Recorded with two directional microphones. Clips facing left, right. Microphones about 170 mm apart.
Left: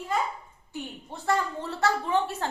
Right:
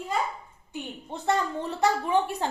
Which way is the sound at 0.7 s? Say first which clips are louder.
Right 2 dB; 20° right (ahead or behind).